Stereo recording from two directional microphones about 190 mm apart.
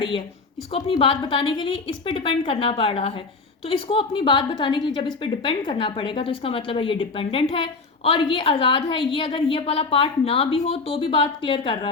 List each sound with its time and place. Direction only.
0.7 s speech: 30° left (ahead or behind)